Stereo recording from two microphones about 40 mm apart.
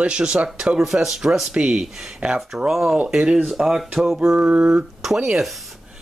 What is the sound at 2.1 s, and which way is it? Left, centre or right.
Speech, right.